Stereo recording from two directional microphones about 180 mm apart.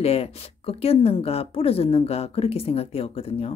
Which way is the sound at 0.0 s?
35° left (ahead or behind).